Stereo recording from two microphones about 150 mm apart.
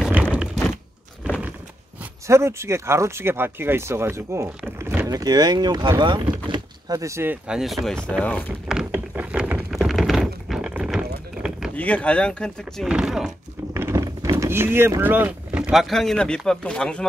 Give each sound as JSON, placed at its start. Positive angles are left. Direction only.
{"t": 0.1, "sound": "typewriter", "side_deg": -10}
{"t": 2.2, "sound": "speech", "side_deg": -20}
{"t": 7.4, "sound": "speech", "side_deg": -5}
{"t": 8.9, "sound": "a sound", "side_deg": -10}
{"t": 11.7, "sound": "speech", "side_deg": 10}
{"t": 12.8, "sound": "speech", "side_deg": -5}
{"t": 13.7, "sound": "speech", "side_deg": -20}